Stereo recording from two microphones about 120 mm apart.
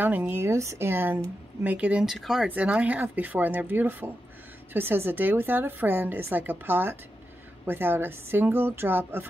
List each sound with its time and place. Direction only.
0.0 s a woman's voice: 15° right (ahead or behind)